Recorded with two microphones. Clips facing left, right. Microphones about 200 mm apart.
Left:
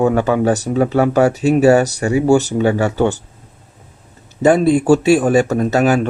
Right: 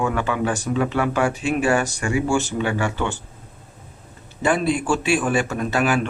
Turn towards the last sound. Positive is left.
turn(degrees=40)  # may be behind; listen again after turning